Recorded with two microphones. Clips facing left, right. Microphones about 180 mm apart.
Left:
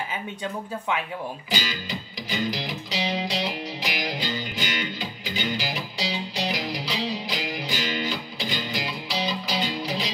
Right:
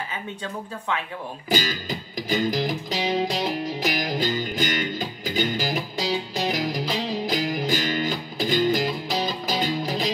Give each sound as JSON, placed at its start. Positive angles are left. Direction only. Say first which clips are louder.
{"t": 1.5, "sound": "music", "louder": "right 7 dB", "side_deg": -50}